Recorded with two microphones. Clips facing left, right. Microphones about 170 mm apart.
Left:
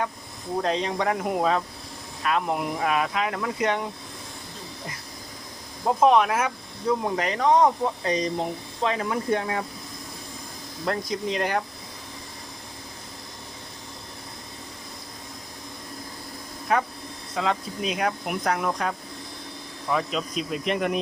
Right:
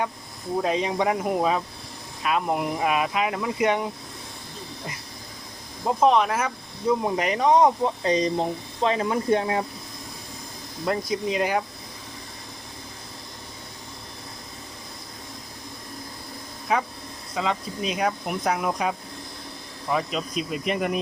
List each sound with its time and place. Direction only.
0.6 s speech: 10° right (ahead or behind)
6.0 s speech: 5° left (ahead or behind)
6.8 s speech: 10° right (ahead or behind)
8.8 s speech: 30° right (ahead or behind)
10.8 s speech: 5° right (ahead or behind)
16.7 s speech: centre (ahead or behind)